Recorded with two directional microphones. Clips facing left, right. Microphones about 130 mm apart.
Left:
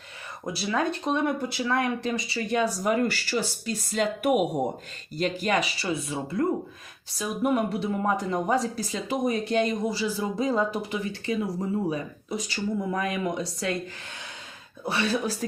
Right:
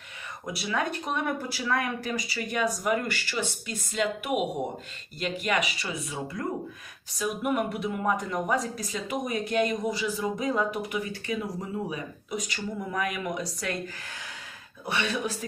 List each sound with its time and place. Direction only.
0.4 s speech: 30° left (ahead or behind)
7.4 s speech: 30° left (ahead or behind)
14.8 s speech: 35° left (ahead or behind)